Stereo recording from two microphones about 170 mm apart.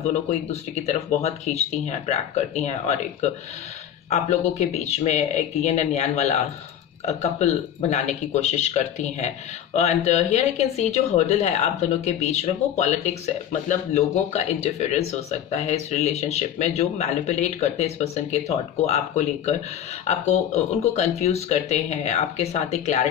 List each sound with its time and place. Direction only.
0.5 s a woman's voice: 40° left (ahead or behind)
20.9 s a woman's voice: 40° left (ahead or behind)